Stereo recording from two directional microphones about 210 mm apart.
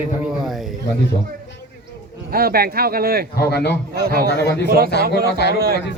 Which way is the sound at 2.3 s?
45° right (ahead or behind).